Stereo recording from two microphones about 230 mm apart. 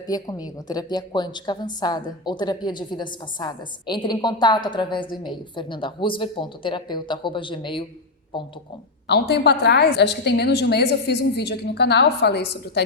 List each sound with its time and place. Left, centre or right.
0.1 s a woman's voice: centre
9.0 s a woman's voice: left